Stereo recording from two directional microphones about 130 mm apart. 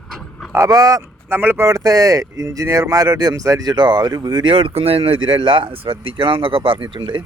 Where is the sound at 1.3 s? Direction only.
15° right (ahead or behind).